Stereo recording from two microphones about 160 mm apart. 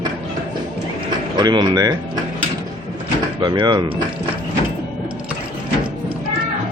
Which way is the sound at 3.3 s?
30° right (ahead or behind).